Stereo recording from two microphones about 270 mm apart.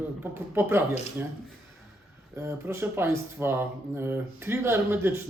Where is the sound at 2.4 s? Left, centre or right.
Centre.